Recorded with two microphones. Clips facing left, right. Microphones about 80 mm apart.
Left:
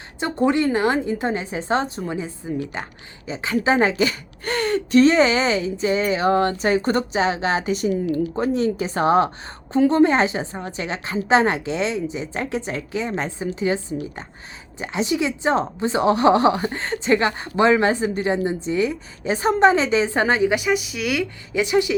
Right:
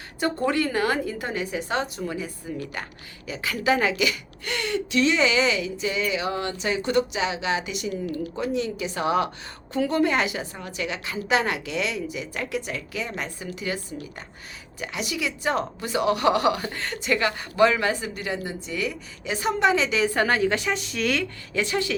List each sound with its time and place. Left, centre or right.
0.2 s speech: left